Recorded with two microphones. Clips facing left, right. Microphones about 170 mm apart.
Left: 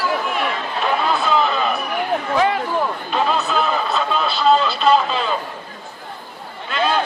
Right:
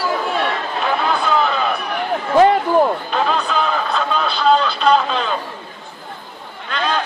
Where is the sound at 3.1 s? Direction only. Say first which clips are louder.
Even; centre (ahead or behind).